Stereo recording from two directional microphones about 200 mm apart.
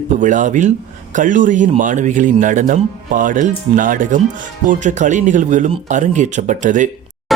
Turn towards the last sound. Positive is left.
turn(degrees=-40)  # may be behind; listen again after turning